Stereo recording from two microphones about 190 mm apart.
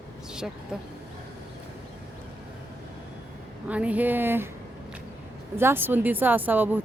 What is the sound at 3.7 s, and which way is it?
Speech, 5° right (ahead or behind).